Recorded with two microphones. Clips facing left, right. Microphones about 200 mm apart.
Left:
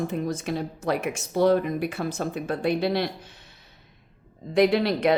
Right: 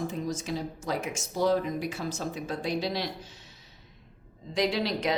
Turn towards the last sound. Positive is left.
turn(degrees=60)  # may be behind; listen again after turning